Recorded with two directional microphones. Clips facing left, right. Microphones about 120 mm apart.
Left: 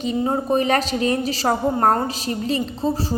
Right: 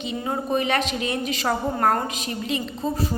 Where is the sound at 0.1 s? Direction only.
35° left (ahead or behind).